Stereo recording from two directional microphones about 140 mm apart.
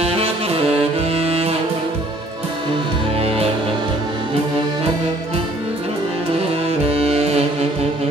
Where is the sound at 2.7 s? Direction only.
40° right (ahead or behind).